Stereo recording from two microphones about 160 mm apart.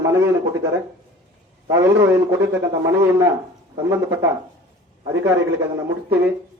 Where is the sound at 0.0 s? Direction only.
15° right (ahead or behind).